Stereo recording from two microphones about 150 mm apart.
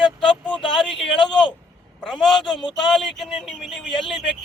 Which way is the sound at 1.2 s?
35° left (ahead or behind).